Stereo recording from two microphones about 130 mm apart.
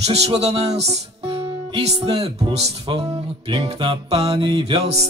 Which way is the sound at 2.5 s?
55° right (ahead or behind).